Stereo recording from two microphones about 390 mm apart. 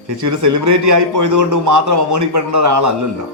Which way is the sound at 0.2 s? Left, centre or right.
Right.